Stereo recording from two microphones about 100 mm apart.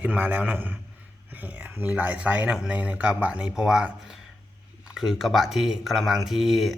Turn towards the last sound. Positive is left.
turn(degrees=0)  # may be behind; listen again after turning